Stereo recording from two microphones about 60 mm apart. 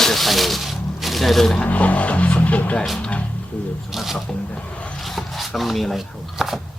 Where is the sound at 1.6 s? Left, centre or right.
Left.